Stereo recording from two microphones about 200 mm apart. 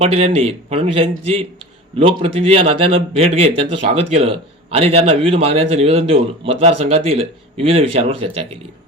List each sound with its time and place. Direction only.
0.0 s speech: 30° right (ahead or behind)